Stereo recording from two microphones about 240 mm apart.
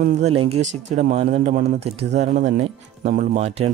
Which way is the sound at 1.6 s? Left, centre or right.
Right.